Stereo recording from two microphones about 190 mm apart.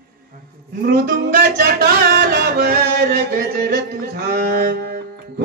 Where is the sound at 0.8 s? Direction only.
55° right (ahead or behind).